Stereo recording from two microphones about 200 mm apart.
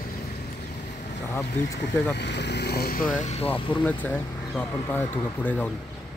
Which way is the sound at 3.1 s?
35° left (ahead or behind).